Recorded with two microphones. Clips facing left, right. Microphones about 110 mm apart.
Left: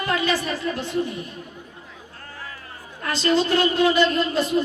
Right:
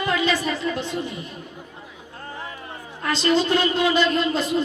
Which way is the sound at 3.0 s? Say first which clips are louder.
Even; 25° right (ahead or behind).